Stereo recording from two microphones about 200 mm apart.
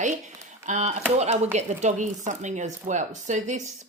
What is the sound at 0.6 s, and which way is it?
Speech, 35° right (ahead or behind).